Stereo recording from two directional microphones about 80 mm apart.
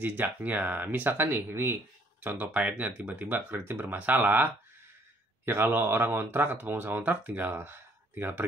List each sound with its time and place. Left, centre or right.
0.0 s speech: right
2.2 s speech: centre